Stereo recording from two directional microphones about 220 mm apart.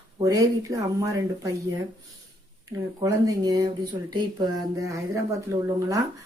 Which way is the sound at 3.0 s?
15° right (ahead or behind).